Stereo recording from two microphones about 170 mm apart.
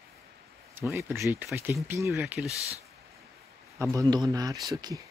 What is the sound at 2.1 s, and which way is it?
Speech, 5° right (ahead or behind).